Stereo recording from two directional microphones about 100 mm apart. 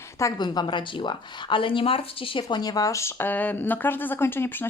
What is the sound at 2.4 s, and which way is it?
Speech, 40° left (ahead or behind).